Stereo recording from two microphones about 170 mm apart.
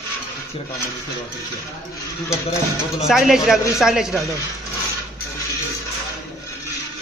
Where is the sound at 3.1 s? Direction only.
Centre (ahead or behind).